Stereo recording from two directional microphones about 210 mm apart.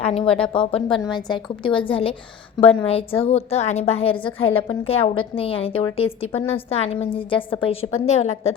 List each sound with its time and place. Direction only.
0.0 s a woman's voice: 30° left (ahead or behind)
4.4 s a woman's voice: 75° left (ahead or behind)
4.9 s a woman's voice: 30° left (ahead or behind)